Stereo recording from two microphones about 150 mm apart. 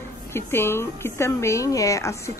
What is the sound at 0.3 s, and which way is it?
A woman's voice, 15° left (ahead or behind).